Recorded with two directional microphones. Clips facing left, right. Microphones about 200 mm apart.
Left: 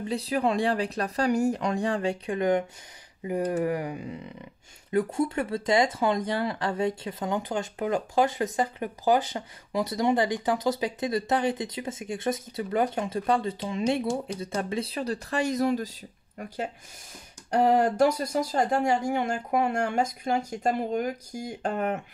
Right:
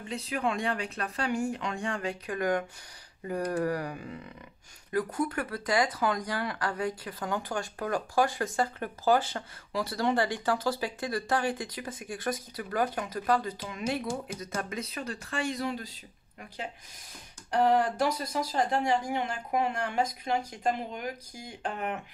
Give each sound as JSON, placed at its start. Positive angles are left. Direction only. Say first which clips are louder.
{"t": 0.1, "sound": "speech", "louder": "left 5 dB", "side_deg": 35}